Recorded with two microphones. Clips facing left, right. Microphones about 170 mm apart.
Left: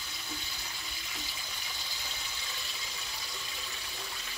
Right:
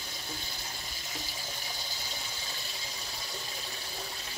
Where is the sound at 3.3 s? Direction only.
40° right (ahead or behind).